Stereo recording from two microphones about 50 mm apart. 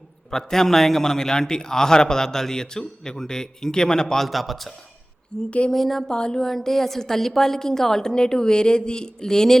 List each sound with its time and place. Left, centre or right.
0.3 s a man's voice: centre
5.5 s speech: left
5.7 s speech: centre
6.1 s a man's voice: centre